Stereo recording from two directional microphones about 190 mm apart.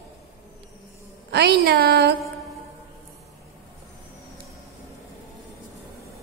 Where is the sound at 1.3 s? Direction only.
60° right (ahead or behind).